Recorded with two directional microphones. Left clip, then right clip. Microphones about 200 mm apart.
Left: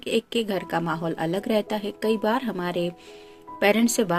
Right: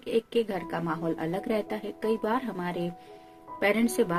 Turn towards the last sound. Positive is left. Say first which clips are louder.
# left 4 dB
turn(degrees=35)  # may be behind; listen again after turning